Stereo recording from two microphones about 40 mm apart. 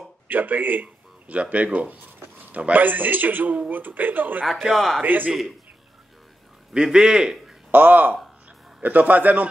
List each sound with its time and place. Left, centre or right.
0.3 s a man's voice: right
1.3 s a man's voice: right
4.5 s a man's voice: centre
5.0 s a man's voice: right
6.7 s a man's voice: right
7.7 s a man's voice: right